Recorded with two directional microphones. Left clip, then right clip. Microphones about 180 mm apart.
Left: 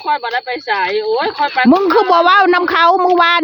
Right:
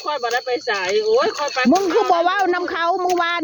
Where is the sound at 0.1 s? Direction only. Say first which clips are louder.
Left 4 dB; 40° left (ahead or behind).